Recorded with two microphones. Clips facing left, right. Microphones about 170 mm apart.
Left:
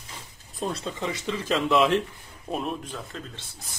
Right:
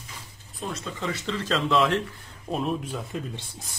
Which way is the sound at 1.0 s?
15° left (ahead or behind).